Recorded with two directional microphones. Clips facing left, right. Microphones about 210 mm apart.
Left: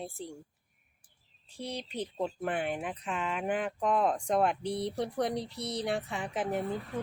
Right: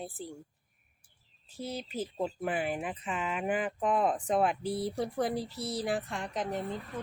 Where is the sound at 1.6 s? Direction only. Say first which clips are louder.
Right 1 dB; 5° right (ahead or behind).